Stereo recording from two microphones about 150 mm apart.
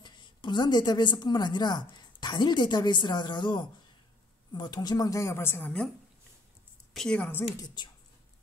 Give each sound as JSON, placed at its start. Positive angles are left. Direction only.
{"t": 0.0, "sound": "a woman's voice", "side_deg": 30}
{"t": 6.9, "sound": "a woman's voice", "side_deg": 5}
{"t": 7.6, "sound": "a woman's voice", "side_deg": 30}